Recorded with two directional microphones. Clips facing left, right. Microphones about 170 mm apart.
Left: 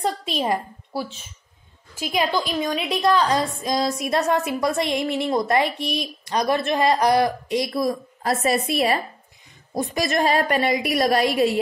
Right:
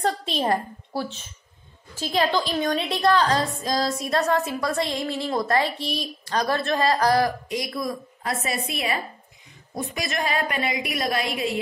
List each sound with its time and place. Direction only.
0.0 s a woman's voice: 10° left (ahead or behind); by 11.2 s 40° left (ahead or behind)